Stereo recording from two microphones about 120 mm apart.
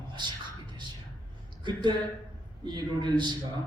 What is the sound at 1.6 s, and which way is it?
A man's voice, 40° right (ahead or behind).